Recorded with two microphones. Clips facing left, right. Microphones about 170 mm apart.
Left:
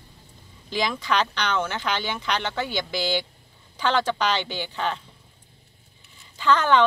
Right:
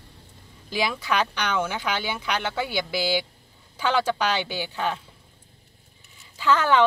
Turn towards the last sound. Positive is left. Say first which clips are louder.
# left 1 dB
turn(degrees=-10)  # may be behind; listen again after turning